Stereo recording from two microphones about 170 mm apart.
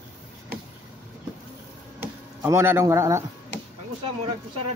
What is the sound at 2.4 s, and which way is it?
Speech, 15° right (ahead or behind).